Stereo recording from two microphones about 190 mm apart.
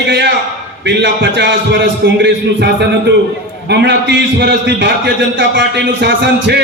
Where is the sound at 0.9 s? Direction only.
70° right (ahead or behind).